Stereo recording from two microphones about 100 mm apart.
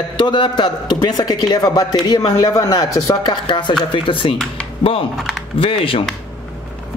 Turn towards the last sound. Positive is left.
turn(degrees=65)  # may be behind; listen again after turning